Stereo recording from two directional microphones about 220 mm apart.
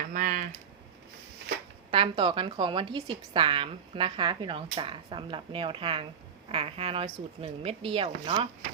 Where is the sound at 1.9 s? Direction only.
25° right (ahead or behind).